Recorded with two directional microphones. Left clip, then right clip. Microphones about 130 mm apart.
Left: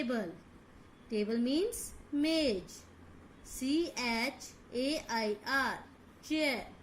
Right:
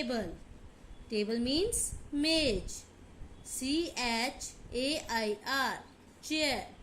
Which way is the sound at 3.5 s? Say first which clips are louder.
Even; 50° right (ahead or behind).